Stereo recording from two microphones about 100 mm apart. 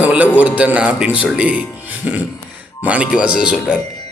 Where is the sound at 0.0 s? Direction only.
15° right (ahead or behind).